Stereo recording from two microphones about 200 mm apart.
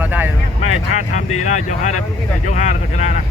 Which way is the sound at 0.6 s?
35° left (ahead or behind).